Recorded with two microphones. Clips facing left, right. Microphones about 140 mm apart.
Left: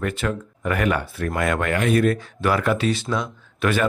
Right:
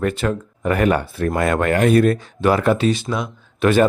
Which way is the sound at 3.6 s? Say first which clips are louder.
Right 7 dB; 30° right (ahead or behind).